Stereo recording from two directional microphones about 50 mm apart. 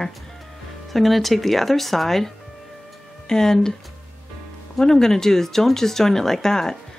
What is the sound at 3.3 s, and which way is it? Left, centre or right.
Speech, centre.